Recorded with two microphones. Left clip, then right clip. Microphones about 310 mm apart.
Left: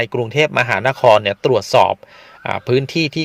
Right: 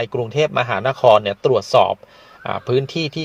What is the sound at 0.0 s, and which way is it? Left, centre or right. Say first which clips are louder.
A man's voice: left 3 dB; left.